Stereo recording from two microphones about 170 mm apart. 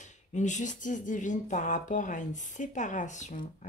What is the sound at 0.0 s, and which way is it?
Speech, 45° left (ahead or behind).